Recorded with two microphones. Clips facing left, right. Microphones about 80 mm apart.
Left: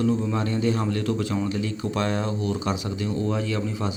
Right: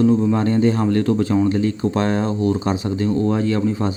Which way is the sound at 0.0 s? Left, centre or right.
Right.